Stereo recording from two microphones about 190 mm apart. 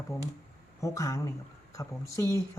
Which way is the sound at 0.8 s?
15° left (ahead or behind).